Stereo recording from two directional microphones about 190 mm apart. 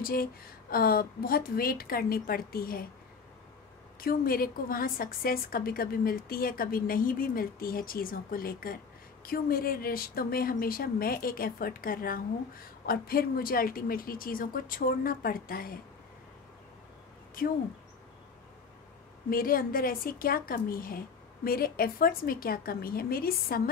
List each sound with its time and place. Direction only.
0.0 s a woman's voice: 50° left (ahead or behind)
4.0 s a woman's voice: 50° left (ahead or behind)
19.3 s a woman's voice: 50° left (ahead or behind)